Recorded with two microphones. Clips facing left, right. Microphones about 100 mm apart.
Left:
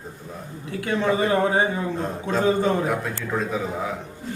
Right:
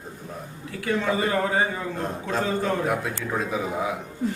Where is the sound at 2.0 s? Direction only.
Centre (ahead or behind).